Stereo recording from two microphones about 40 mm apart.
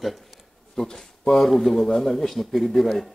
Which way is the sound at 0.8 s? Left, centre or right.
Centre.